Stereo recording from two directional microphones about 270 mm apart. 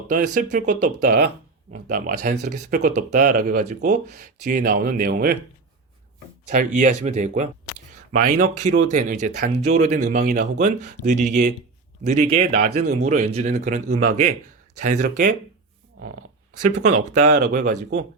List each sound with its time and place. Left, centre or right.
0.1 s speech: right
6.5 s speech: right
16.6 s speech: right